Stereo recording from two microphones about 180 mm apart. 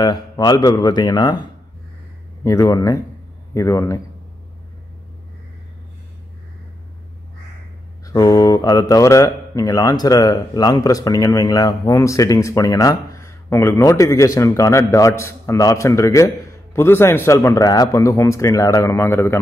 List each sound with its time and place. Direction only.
0.0 s speech: 25° left (ahead or behind)
8.0 s speech: 20° left (ahead or behind)